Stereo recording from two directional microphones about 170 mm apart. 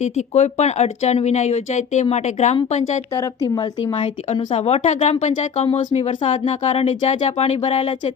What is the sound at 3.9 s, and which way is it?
Speech, 45° left (ahead or behind).